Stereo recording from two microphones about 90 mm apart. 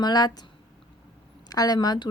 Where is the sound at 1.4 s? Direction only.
45° left (ahead or behind).